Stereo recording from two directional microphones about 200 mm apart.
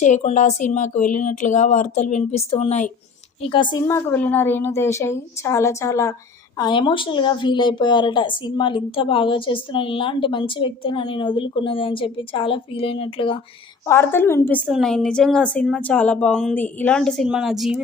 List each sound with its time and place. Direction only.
0.0 s a woman's voice: 35° left (ahead or behind)
3.8 s a woman's voice: 10° left (ahead or behind); by 13.4 s 25° left (ahead or behind)
13.8 s a woman's voice: 10° left (ahead or behind)
14.6 s a woman's voice: centre (ahead or behind)